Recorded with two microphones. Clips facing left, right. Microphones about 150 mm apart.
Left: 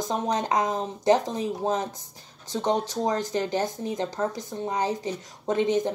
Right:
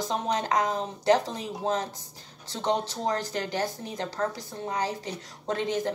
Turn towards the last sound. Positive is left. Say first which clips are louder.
# left 5 dB
turn(degrees=20)  # may be behind; listen again after turning